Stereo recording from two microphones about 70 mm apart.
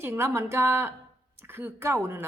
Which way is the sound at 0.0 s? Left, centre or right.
Right.